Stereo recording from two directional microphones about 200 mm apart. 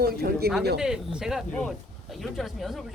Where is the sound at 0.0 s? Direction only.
50° right (ahead or behind).